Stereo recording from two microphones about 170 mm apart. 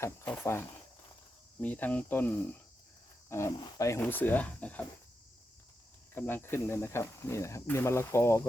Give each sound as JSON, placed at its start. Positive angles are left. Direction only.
{"t": 0.0, "sound": "speech", "side_deg": 15}
{"t": 6.1, "sound": "speech", "side_deg": 15}